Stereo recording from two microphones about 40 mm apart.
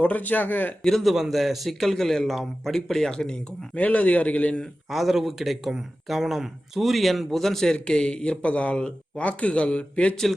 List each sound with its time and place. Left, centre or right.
0.0 s speech: left
0.8 s speech: centre
1.0 s a man's voice: centre
3.1 s speech: left
3.8 s a man's voice: left
4.9 s a man's voice: centre; by 10.2 s left